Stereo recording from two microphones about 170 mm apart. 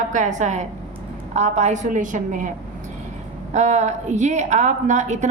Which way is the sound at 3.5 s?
45° right (ahead or behind).